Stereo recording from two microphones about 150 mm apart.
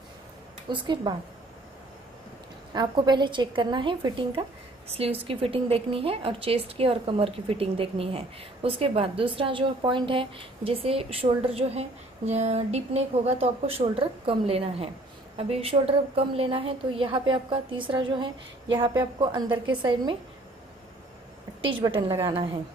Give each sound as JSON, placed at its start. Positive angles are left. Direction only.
{"t": 0.7, "sound": "a woman's voice", "side_deg": -30}
{"t": 2.7, "sound": "a woman's voice", "side_deg": -30}
{"t": 21.5, "sound": "a woman's voice", "side_deg": -35}